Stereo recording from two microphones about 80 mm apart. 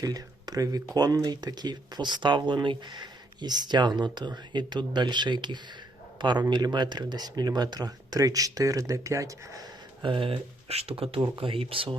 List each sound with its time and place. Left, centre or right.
0.0 s a man's voice: right
10.0 s speech: right